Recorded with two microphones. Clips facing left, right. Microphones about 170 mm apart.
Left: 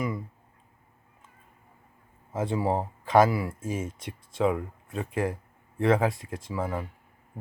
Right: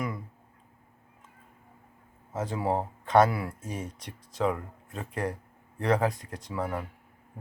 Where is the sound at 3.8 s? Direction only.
90° left.